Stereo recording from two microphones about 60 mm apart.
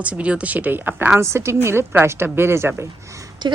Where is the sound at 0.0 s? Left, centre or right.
Right.